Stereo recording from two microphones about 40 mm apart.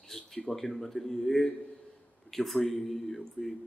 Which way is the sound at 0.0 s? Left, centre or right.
Centre.